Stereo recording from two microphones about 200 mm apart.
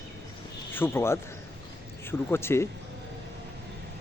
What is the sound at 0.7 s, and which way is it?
Speech, 10° left (ahead or behind).